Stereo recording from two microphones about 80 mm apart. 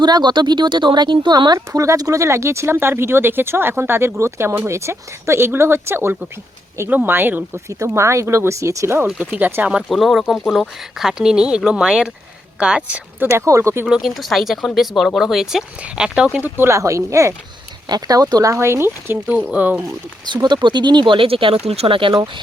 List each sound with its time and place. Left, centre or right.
0.0 s speech: right
1.5 s speech: right
7.7 s speech: right
9.2 s speech: right
9.6 s speech: centre
10.0 s a woman's voice: centre
13.1 s speech: right
13.8 s speech: centre
16.4 s speech: right
17.8 s speech: right
19.5 s speech: centre
20.2 s speech: right